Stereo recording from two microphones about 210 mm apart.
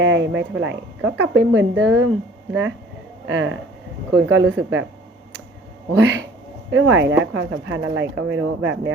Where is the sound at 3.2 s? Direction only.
65° right (ahead or behind).